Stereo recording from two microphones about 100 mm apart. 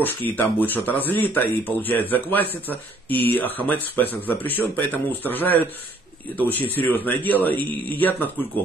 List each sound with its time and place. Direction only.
0.0 s speech: 20° left (ahead or behind)